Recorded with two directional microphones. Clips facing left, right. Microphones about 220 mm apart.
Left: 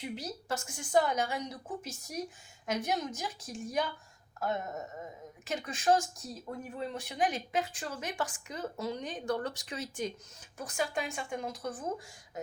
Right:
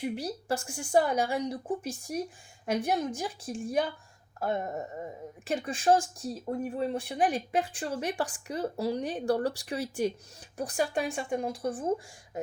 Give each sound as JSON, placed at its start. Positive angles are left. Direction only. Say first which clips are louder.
{"t": 0.0, "sound": "a woman's voice", "louder": "right 6 dB", "side_deg": -30}